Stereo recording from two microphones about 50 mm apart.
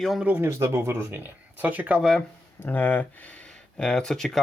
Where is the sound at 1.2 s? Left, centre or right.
Right.